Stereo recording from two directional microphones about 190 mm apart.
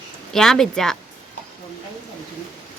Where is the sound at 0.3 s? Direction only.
Centre (ahead or behind).